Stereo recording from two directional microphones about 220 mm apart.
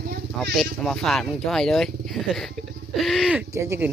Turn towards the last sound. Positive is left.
turn(degrees=-10)  # may be behind; listen again after turning